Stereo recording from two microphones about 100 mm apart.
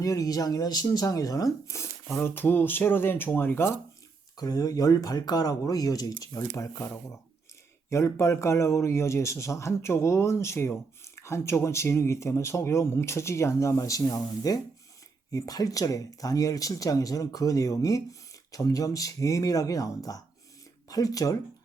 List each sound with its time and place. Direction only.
0.0 s speech: 35° left (ahead or behind); by 3.8 s 20° left (ahead or behind)
4.4 s speech: 35° left (ahead or behind)